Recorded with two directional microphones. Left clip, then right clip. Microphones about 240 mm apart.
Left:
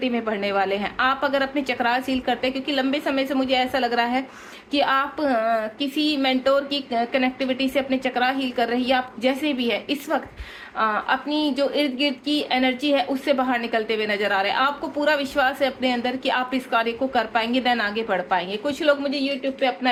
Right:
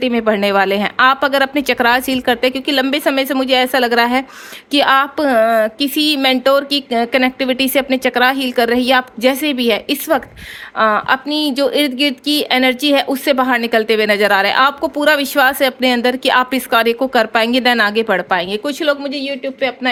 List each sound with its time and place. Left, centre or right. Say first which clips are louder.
0.0 s a woman's voice: right 10 dB; right